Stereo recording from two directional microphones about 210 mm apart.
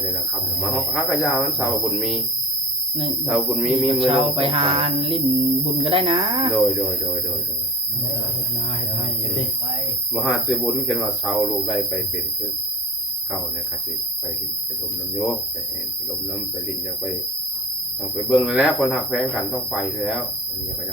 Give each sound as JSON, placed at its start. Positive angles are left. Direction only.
{"t": 0.6, "sound": "speech", "side_deg": 0}
{"t": 3.2, "sound": "speech", "side_deg": 0}
{"t": 3.8, "sound": "a sound", "side_deg": -25}
{"t": 10.2, "sound": "speech", "side_deg": 0}
{"t": 18.3, "sound": "speech", "side_deg": 0}